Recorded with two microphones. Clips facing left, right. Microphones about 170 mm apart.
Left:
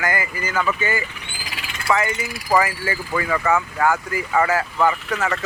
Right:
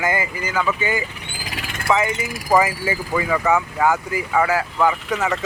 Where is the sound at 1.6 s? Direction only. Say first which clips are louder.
Right 4 dB; 50° right (ahead or behind).